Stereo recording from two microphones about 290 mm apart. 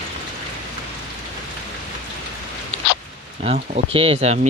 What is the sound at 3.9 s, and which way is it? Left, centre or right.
Speech, centre.